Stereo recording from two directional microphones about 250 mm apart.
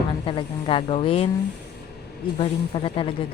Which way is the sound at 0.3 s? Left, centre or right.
Left.